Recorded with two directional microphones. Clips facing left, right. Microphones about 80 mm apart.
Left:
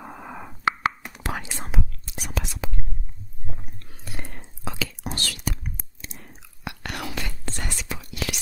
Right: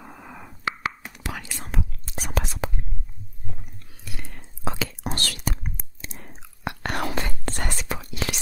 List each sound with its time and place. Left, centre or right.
0.0 s whispering: left
1.4 s whispering: left
2.0 s whispering: right
4.0 s whispering: left
4.6 s whispering: right
5.1 s whispering: right
5.9 s chewing: right
7.4 s whispering: right
8.1 s whispering: right